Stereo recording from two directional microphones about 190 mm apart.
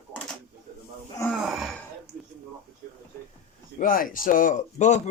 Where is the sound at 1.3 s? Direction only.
Centre (ahead or behind).